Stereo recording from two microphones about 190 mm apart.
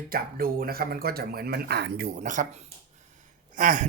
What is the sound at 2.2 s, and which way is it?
Speech, 45° right (ahead or behind).